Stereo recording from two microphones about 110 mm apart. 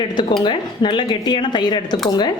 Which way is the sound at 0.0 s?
45° left (ahead or behind).